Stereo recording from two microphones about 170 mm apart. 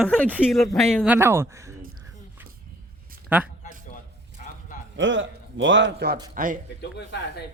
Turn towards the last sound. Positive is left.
turn(degrees=85)